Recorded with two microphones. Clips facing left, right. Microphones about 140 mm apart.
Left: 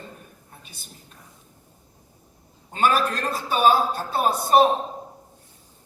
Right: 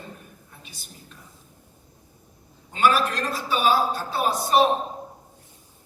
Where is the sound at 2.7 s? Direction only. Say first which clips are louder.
Even; 45° left (ahead or behind).